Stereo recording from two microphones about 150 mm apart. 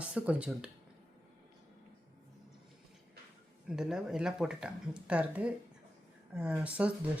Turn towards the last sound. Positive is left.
turn(degrees=-10)  # may be behind; listen again after turning